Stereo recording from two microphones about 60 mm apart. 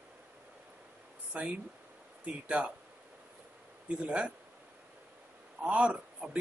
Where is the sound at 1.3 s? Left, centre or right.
Centre.